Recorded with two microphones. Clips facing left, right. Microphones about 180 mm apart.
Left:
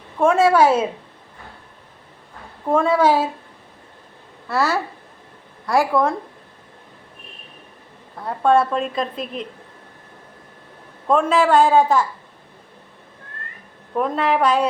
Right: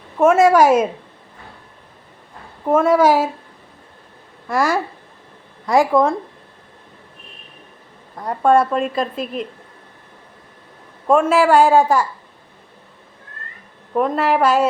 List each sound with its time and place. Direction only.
0.2 s speech: 10° right (ahead or behind)
2.6 s speech: 10° right (ahead or behind)
4.4 s speech: 15° right (ahead or behind)
8.4 s a woman's voice: 5° right (ahead or behind)
11.1 s speech: 5° right (ahead or behind)
13.9 s a woman's voice: 5° right (ahead or behind)